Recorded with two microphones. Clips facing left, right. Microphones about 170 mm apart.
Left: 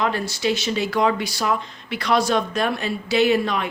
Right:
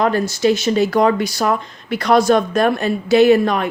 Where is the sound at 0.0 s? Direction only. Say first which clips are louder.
Right 7 dB; 45° right (ahead or behind).